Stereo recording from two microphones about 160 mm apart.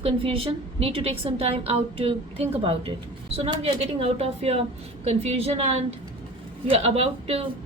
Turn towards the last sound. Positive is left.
turn(degrees=-40)  # may be behind; listen again after turning